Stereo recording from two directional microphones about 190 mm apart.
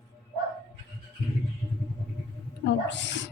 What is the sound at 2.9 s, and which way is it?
Speech, 70° left (ahead or behind).